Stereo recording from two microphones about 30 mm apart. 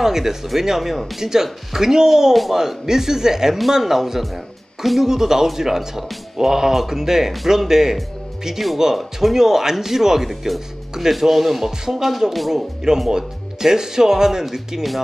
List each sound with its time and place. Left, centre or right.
0.0 s speech: centre
12.1 s speech: centre
13.1 s speech: centre